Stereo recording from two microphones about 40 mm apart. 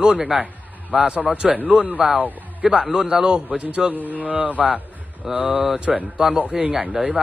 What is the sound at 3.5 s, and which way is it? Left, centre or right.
Speech, right.